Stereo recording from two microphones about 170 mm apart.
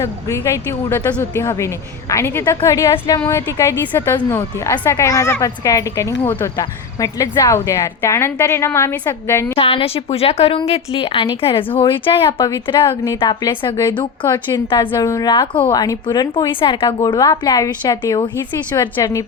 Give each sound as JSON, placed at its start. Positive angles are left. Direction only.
{"t": 0.0, "sound": "a woman's voice", "side_deg": 15}
{"t": 9.6, "sound": "a woman's voice", "side_deg": 35}
{"t": 14.8, "sound": "a woman's voice", "side_deg": 20}